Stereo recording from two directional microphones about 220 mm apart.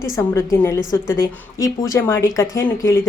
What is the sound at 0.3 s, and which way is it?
A woman's voice, 15° left (ahead or behind).